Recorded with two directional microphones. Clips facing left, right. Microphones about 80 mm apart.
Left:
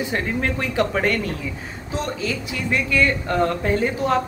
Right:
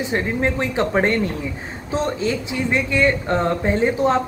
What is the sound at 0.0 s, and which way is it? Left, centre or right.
Speech, right.